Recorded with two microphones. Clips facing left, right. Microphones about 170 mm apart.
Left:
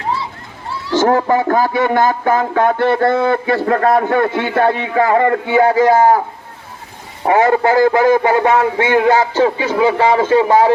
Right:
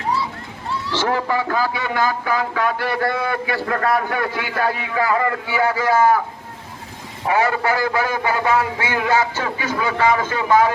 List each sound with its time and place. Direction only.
0.9 s speech: 45° left (ahead or behind)
2.6 s speech: 25° left (ahead or behind)
7.3 s speech: 40° left (ahead or behind)
7.6 s speech: 25° left (ahead or behind)